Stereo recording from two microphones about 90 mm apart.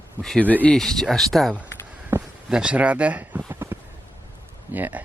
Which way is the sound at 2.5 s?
10° right (ahead or behind).